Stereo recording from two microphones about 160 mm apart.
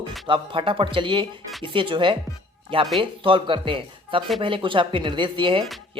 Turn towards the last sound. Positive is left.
turn(degrees=-30)  # may be behind; listen again after turning